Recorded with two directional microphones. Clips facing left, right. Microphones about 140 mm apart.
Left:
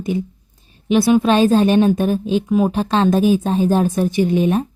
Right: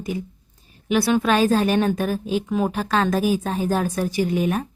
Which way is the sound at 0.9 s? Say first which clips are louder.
Left 5 dB; 20° left (ahead or behind).